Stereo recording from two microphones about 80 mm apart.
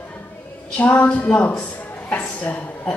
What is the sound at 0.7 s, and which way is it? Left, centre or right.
A woman's voice, centre.